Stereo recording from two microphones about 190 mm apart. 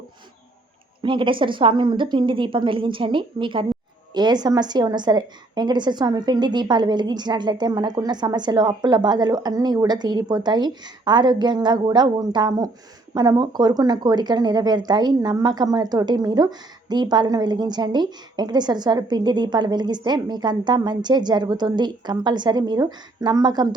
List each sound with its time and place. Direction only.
1.0 s speech: 25° right (ahead or behind)